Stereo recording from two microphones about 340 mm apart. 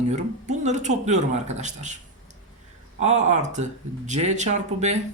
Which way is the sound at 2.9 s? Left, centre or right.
Centre.